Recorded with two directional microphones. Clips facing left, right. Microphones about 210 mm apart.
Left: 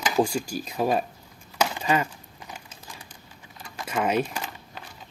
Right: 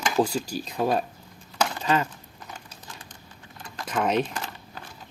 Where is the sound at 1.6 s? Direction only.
10° left (ahead or behind).